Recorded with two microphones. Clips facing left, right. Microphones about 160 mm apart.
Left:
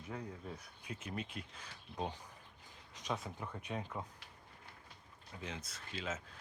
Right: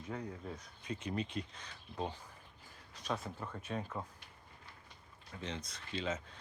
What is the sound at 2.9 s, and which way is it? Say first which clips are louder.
Speech: right 1 dB; 15° left (ahead or behind).